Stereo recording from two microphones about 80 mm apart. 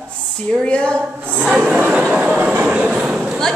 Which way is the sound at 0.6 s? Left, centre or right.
Centre.